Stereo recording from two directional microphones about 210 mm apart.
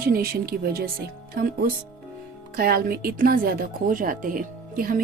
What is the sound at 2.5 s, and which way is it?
A woman's voice, 45° right (ahead or behind).